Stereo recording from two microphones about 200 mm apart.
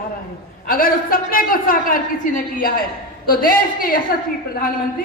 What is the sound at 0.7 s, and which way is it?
A man's voice, 45° left (ahead or behind).